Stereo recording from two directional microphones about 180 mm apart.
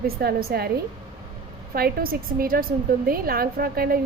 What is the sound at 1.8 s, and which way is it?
A woman's voice, 55° right (ahead or behind).